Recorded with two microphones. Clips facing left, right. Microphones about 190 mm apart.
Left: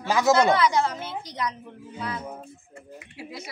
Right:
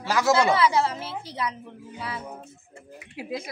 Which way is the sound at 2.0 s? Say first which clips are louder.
Left 2 dB; 5° right (ahead or behind).